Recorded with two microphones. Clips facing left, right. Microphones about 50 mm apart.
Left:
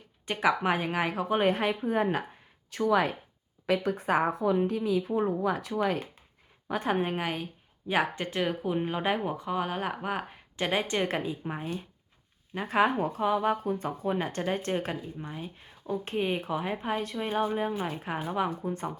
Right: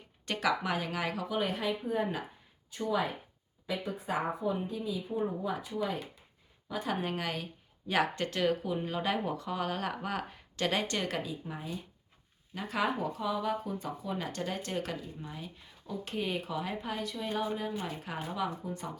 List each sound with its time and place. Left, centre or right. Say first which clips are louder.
0.3 s speech: left 5 dB; left
2.6 s a woman's voice: left 6 dB; left
6.7 s speech: left 6 dB; left
7.0 s speech: left 4 dB; left
11.4 s speech: left 5 dB; left